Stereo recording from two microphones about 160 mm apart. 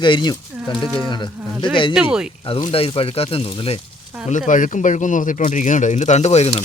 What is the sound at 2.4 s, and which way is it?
Speech, 30° left (ahead or behind).